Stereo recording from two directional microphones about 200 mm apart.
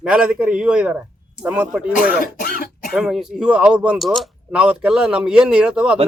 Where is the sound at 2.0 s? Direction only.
45° left (ahead or behind).